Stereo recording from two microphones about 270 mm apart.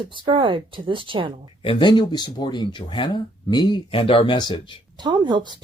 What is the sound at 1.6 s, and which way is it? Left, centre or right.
Speech, centre.